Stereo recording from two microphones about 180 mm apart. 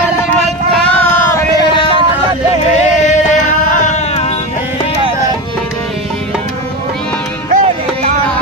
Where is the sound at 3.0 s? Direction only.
40° left (ahead or behind).